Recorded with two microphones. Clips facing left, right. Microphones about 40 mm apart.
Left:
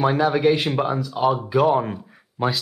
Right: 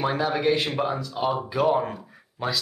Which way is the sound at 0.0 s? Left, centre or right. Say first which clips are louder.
Left 5 dB; centre.